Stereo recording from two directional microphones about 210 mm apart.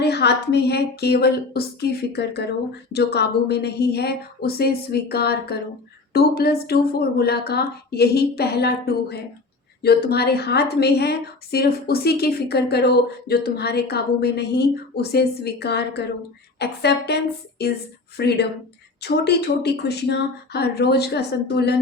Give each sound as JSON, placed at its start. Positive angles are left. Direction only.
{"t": 0.0, "sound": "a woman's voice", "side_deg": 50}